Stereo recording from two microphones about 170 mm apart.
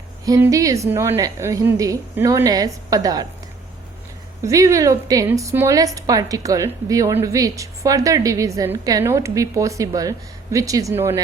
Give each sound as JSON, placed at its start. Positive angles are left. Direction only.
{"t": 0.3, "sound": "a woman's voice", "side_deg": -15}
{"t": 4.4, "sound": "a woman's voice", "side_deg": -20}